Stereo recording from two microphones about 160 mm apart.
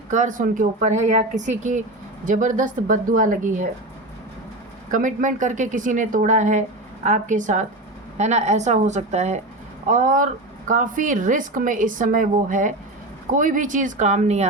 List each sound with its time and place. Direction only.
0.1 s a woman's voice: 50° right (ahead or behind)
4.9 s a woman's voice: 55° right (ahead or behind)
9.8 s a woman's voice: 55° right (ahead or behind)